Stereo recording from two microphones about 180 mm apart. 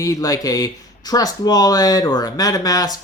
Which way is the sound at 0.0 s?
20° left (ahead or behind).